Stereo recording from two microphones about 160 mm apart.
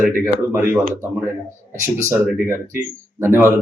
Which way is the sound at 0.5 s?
15° right (ahead or behind).